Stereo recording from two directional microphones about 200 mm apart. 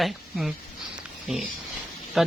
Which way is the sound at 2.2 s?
Centre (ahead or behind).